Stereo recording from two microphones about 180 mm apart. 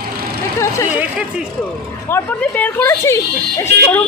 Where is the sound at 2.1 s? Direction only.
10° left (ahead or behind).